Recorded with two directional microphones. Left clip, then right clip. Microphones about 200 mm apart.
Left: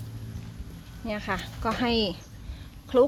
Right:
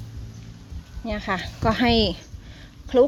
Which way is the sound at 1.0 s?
30° right (ahead or behind).